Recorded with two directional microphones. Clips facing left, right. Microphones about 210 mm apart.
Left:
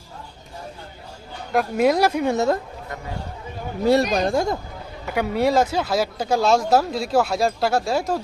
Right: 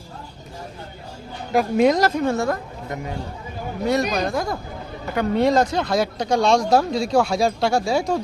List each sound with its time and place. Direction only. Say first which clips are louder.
1.5 s speech: right 2 dB; centre (ahead or behind); by 2.6 s 20° left (ahead or behind)
4.1 s a woman's voice: left 3 dB; 30° left (ahead or behind)
5.1 s speech: right 1 dB; 5° left (ahead or behind)